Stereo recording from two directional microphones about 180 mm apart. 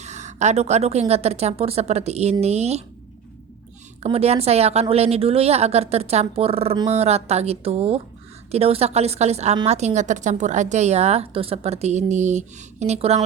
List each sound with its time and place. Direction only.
0.0 s a woman's voice: 40° right (ahead or behind)
4.0 s a woman's voice: 35° right (ahead or behind)